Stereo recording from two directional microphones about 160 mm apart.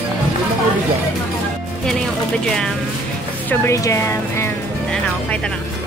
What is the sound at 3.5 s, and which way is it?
Speech, 20° left (ahead or behind).